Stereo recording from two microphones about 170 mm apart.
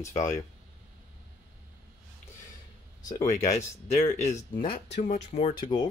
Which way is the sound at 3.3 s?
40° left (ahead or behind).